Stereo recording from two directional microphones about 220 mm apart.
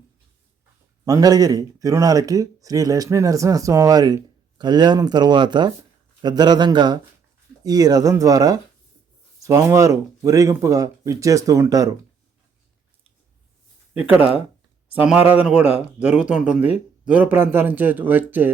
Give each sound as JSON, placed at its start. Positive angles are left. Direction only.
{"t": 1.0, "sound": "speech", "side_deg": -15}
{"t": 13.9, "sound": "speech", "side_deg": -5}